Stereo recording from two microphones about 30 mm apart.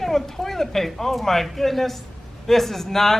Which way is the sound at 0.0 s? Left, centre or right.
Centre.